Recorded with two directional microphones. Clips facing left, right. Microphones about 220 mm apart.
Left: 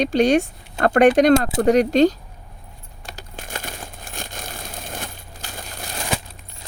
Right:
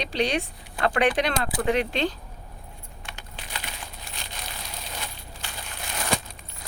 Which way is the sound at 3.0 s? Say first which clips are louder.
Left 7 dB; 45° left (ahead or behind).